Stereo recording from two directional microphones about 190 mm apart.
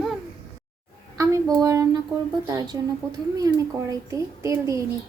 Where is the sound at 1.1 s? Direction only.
15° right (ahead or behind).